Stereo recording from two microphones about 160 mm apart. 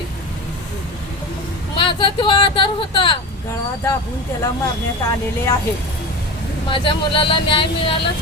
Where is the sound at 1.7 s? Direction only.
30° left (ahead or behind).